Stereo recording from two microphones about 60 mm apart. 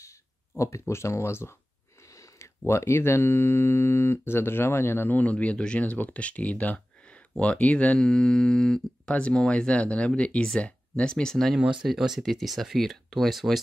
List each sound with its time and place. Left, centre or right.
0.6 s speech: left
2.0 s speech: left; by 11.5 s centre
11.5 s speech: centre